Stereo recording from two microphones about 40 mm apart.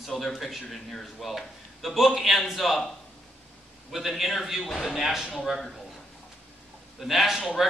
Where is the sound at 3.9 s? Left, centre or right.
Centre.